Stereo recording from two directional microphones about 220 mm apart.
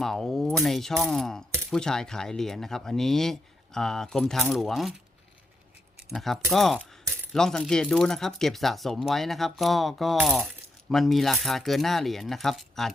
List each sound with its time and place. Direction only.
0.0 s speech: centre (ahead or behind)
6.1 s speech: centre (ahead or behind)